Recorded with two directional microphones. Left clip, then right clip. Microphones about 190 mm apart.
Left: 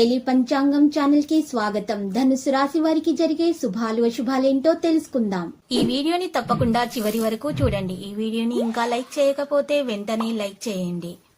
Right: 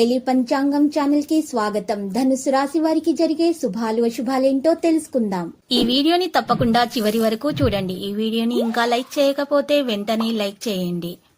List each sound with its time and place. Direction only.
0.0 s a woman's voice: 30° right (ahead or behind)